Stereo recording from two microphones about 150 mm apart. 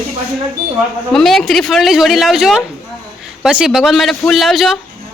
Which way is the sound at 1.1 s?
Centre (ahead or behind).